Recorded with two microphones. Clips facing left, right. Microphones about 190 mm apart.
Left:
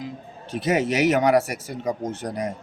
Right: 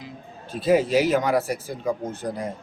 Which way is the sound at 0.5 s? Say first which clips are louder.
Right 3 dB; 75° left (ahead or behind).